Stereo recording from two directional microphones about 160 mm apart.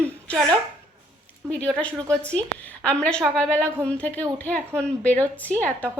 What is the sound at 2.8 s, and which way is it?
A woman's voice, 5° left (ahead or behind).